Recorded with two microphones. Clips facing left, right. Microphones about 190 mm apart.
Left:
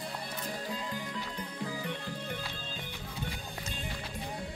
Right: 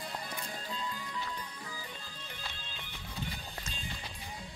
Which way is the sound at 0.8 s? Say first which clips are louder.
Left 2 dB; 65° left (ahead or behind).